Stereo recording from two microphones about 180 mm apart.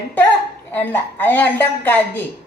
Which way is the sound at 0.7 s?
10° left (ahead or behind).